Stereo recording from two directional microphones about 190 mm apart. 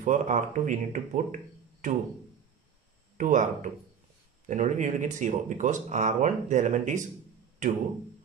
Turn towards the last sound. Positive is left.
turn(degrees=-40)  # may be behind; listen again after turning